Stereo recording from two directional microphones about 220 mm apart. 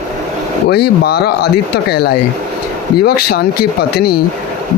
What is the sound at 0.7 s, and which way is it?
Speech, 45° left (ahead or behind).